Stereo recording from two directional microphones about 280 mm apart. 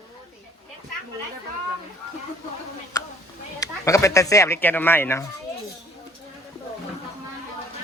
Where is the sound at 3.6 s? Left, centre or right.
Centre.